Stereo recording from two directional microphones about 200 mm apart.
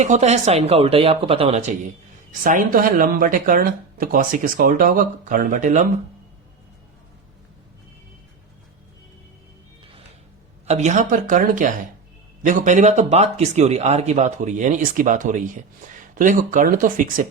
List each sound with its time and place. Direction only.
0.0 s speech: 35° right (ahead or behind)
10.7 s speech: 35° right (ahead or behind)